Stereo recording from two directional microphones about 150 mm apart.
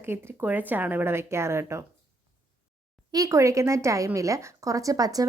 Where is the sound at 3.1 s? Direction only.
20° right (ahead or behind).